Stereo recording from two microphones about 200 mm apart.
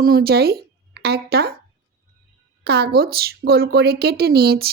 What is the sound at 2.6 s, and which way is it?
A woman's voice, 55° right (ahead or behind).